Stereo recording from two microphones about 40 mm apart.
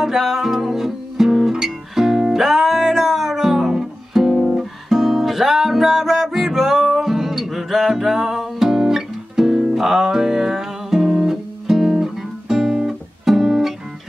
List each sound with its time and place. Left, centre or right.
0.0 s music: centre
12.5 s guitar: centre